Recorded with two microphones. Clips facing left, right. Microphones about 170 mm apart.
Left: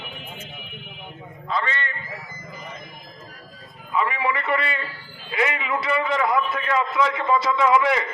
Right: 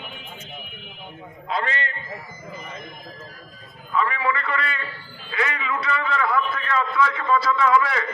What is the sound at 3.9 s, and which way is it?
A man's voice, 15° left (ahead or behind).